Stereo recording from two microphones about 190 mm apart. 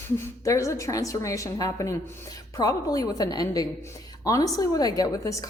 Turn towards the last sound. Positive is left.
turn(degrees=15)  # may be behind; listen again after turning